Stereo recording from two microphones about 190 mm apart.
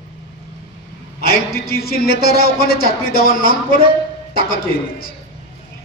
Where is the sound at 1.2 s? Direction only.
55° left (ahead or behind).